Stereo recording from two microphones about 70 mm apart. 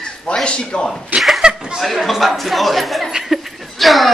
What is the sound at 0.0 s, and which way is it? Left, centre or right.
Speech, centre.